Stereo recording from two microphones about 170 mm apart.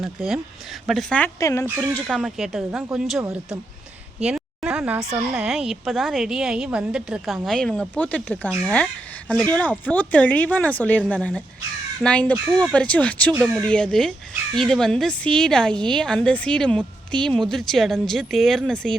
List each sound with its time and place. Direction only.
0.0 s a woman's voice: centre (ahead or behind)
1.4 s speech: 20° left (ahead or behind)
2.0 s a woman's voice: centre (ahead or behind)
4.2 s a sound: 5° right (ahead or behind)
5.3 s a woman's voice: 5° right (ahead or behind)
12.5 s a woman's voice: 5° right (ahead or behind)
12.7 s a woman's voice: 5° left (ahead or behind)